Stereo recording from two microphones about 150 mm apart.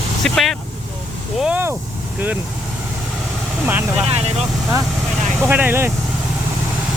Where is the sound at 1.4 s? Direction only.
10° right (ahead or behind).